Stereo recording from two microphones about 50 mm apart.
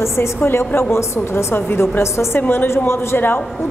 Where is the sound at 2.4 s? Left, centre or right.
Left.